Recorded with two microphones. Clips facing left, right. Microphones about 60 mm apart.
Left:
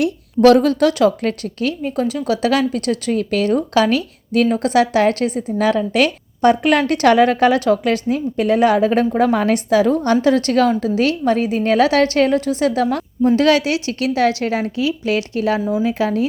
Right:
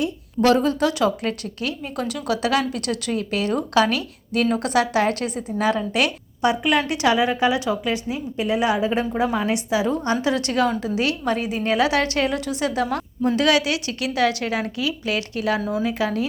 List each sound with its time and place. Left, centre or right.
0.8 s a woman's voice: left